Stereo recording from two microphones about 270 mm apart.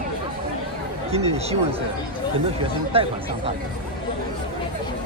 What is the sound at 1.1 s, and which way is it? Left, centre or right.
Speech, right.